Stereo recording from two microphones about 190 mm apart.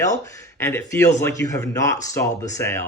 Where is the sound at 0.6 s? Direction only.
15° left (ahead or behind).